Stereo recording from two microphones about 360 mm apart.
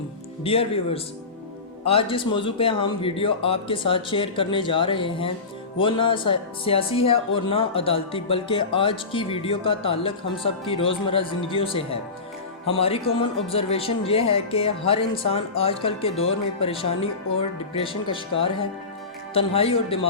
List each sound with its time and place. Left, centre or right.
0.4 s speech: centre
19.3 s speech: centre